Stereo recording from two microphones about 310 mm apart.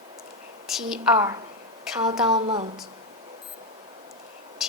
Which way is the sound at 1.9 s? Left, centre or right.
Centre.